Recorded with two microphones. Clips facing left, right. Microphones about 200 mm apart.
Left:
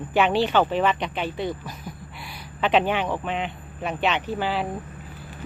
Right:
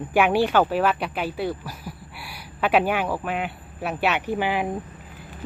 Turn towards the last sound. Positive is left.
turn(degrees=-15)  # may be behind; listen again after turning